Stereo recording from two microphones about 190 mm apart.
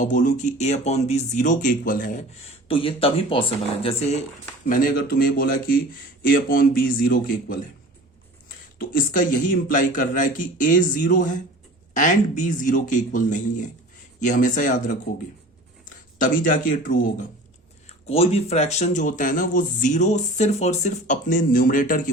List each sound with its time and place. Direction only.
0.0 s speech: 40° left (ahead or behind)
2.4 s speech: 30° left (ahead or behind)
4.6 s speech: 45° left (ahead or behind)
16.1 s speech: 45° left (ahead or behind)
18.0 s speech: 30° left (ahead or behind)